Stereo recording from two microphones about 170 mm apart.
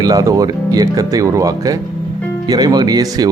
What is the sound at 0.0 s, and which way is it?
Speech, 20° right (ahead or behind).